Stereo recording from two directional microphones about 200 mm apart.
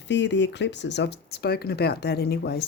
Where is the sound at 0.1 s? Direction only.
60° left (ahead or behind).